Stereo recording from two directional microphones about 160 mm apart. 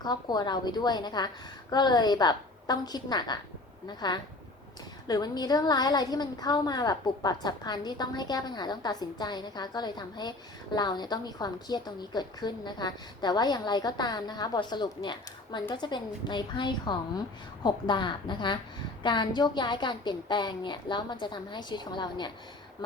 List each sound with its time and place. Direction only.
0.0 s a woman's voice: 25° left (ahead or behind)